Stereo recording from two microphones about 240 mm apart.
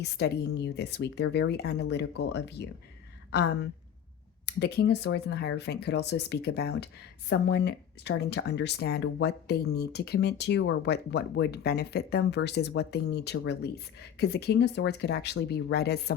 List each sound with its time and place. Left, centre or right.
0.0 s speech: left